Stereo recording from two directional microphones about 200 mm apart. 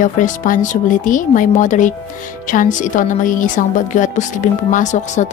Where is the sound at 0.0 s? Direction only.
40° left (ahead or behind).